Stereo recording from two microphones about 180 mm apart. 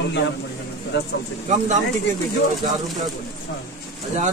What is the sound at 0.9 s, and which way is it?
Speech, 75° left (ahead or behind).